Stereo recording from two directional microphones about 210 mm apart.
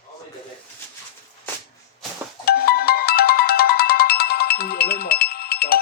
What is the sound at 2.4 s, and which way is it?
Music, 45° left (ahead or behind).